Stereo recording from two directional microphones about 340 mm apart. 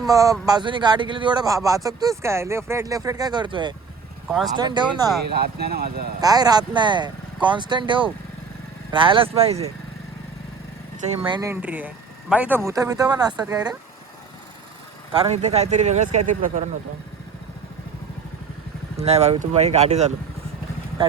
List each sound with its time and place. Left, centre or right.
0.0 s speech: centre
5.3 s speech: right
6.1 s speech: centre
11.2 s speech: centre
15.1 s speech: centre
18.9 s speech: centre